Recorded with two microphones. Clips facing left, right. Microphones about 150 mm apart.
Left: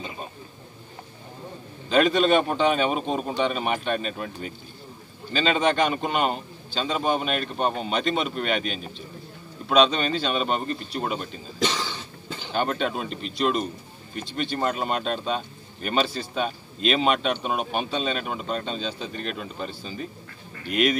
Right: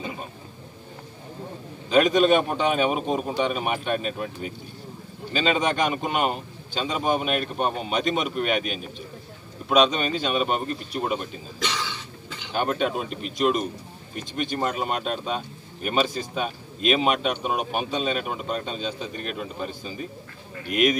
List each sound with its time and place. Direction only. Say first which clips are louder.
1.9 s speech: right 1 dB; 5° right (ahead or behind)
11.6 s cough: left 4 dB; 35° left (ahead or behind)
12.5 s speech: right 1 dB; 5° right (ahead or behind)